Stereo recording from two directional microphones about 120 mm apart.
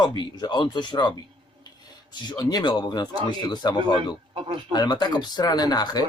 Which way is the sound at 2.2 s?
35° left (ahead or behind).